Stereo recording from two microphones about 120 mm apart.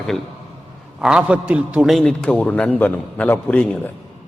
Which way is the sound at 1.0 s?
10° right (ahead or behind).